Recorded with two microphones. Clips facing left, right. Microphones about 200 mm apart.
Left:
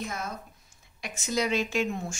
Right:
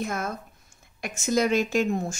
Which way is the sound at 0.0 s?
55° right (ahead or behind).